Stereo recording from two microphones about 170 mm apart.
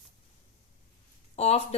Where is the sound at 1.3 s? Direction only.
40° left (ahead or behind).